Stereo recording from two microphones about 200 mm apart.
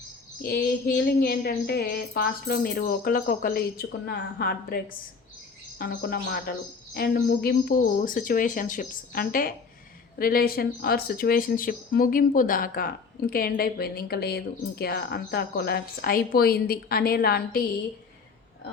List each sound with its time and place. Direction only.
0.4 s a woman's voice: 50° left (ahead or behind)